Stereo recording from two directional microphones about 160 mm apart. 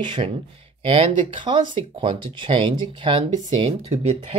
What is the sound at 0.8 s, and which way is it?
Speech, 35° right (ahead or behind).